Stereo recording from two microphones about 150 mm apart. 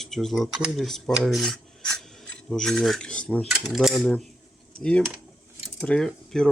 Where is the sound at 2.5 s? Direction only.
5° left (ahead or behind).